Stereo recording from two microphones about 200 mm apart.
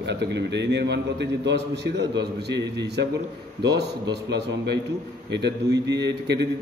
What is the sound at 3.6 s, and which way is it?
A man's voice, 60° right (ahead or behind).